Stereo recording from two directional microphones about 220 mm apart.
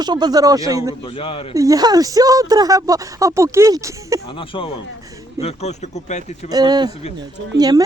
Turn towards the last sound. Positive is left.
turn(degrees=-15)  # may be behind; listen again after turning